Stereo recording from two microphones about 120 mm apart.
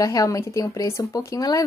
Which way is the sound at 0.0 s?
30° left (ahead or behind).